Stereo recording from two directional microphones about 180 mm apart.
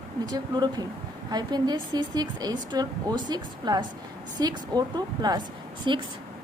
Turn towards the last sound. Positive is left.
turn(degrees=-25)  # may be behind; listen again after turning